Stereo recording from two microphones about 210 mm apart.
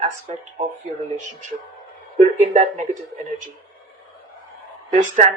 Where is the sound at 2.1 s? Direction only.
35° right (ahead or behind).